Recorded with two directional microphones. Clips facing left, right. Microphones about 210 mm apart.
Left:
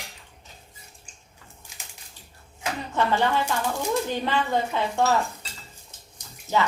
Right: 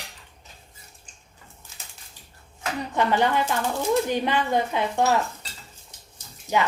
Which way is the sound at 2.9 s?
15° right (ahead or behind).